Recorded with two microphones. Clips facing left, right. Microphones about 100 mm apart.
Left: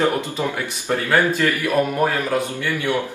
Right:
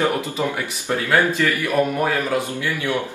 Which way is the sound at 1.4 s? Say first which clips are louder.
Left 1 dB; 15° right (ahead or behind).